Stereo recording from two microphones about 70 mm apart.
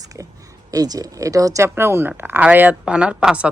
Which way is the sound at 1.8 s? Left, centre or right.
Right.